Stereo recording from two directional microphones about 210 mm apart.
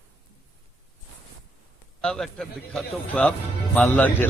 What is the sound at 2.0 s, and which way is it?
A man's voice, 5° left (ahead or behind).